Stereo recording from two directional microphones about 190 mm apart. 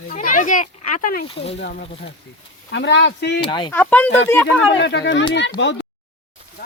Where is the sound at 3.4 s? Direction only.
25° left (ahead or behind).